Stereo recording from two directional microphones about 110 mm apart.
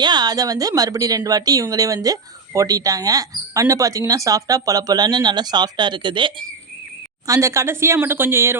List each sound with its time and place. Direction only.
0.0 s speech: 40° right (ahead or behind)
7.3 s speech: 30° right (ahead or behind)